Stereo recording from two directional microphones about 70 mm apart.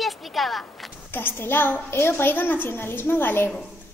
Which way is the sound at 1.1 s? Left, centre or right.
Left.